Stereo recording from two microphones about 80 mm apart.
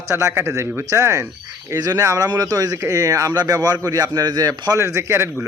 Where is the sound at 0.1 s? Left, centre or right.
Right.